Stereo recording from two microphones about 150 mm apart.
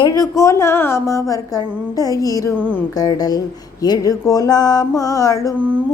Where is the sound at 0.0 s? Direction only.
20° left (ahead or behind).